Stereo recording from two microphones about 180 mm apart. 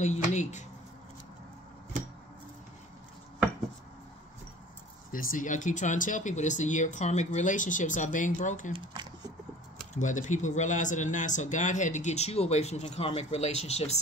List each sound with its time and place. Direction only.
0.0 s speech: 40° left (ahead or behind)
5.1 s speech: 50° left (ahead or behind)
8.7 s speech: 25° right (ahead or behind)
9.9 s speech: 45° left (ahead or behind)